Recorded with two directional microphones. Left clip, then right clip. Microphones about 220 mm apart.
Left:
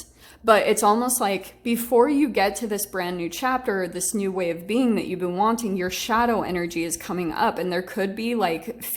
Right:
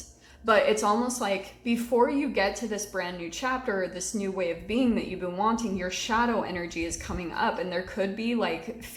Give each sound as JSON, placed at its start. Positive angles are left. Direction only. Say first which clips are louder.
{"t": 0.4, "sound": "a woman's voice", "louder": "left 5 dB", "side_deg": 50}